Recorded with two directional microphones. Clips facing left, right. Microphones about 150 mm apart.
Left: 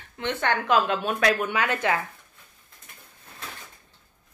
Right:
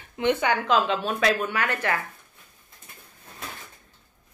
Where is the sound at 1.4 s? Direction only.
20° left (ahead or behind).